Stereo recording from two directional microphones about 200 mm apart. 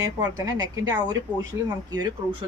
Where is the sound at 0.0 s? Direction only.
20° right (ahead or behind).